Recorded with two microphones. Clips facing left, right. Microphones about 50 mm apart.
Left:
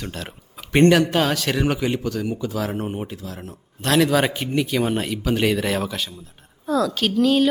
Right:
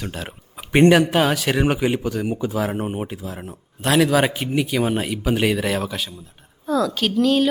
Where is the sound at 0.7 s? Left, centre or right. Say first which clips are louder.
Right 1 dB; centre.